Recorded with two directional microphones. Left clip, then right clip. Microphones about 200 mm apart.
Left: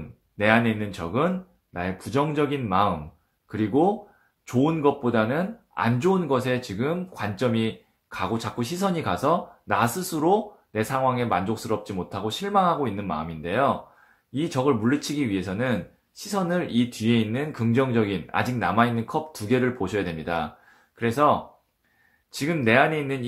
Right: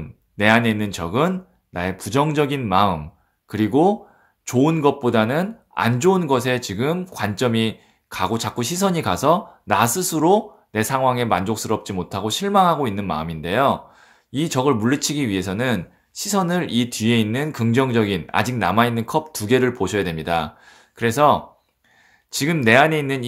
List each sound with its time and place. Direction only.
0.4 s speech: 35° right (ahead or behind)